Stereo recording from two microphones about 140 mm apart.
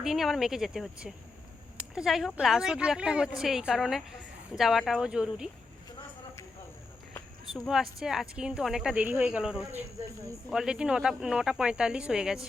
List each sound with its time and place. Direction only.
0.0 s a woman's voice: centre (ahead or behind)
7.5 s a woman's voice: centre (ahead or behind)